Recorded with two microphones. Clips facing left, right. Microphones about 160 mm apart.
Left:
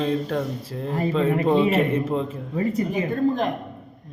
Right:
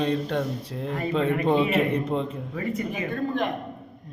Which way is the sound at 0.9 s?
35° left (ahead or behind).